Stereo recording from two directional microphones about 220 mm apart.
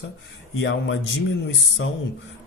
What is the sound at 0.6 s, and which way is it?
Speech, 60° left (ahead or behind).